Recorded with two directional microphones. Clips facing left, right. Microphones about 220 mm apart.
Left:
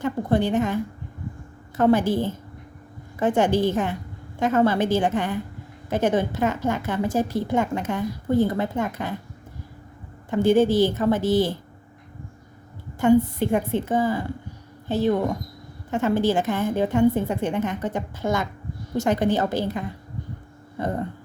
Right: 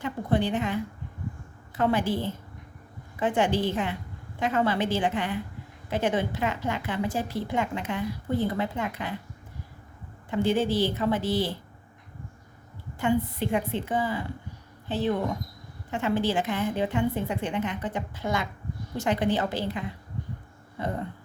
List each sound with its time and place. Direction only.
0.0 s a woman's voice: 45° left (ahead or behind)
10.2 s a woman's voice: 45° left (ahead or behind)
13.0 s a woman's voice: 45° left (ahead or behind)